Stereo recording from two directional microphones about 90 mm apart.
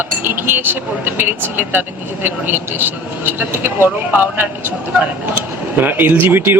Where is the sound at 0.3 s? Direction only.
25° right (ahead or behind).